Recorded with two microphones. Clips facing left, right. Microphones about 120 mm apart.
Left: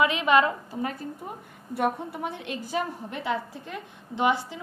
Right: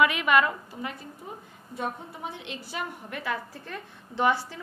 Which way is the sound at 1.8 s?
55° left (ahead or behind).